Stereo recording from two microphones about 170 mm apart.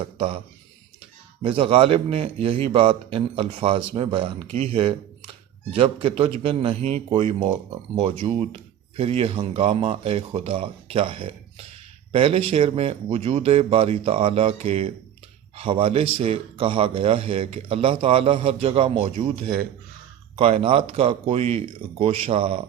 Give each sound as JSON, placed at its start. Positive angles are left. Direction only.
{"t": 0.0, "sound": "speech", "side_deg": -30}